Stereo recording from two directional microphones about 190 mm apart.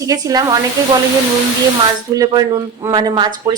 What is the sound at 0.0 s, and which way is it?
Speech, 15° right (ahead or behind).